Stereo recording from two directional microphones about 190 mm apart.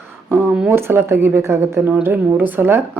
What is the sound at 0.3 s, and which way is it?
Speech, 10° right (ahead or behind).